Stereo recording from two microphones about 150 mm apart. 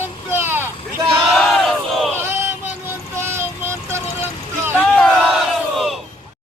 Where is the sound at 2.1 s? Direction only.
15° right (ahead or behind).